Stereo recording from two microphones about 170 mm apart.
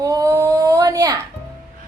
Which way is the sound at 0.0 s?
20° right (ahead or behind).